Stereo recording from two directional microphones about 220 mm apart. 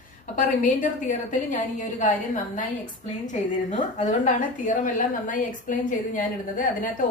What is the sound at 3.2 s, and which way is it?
A woman's voice, 35° left (ahead or behind).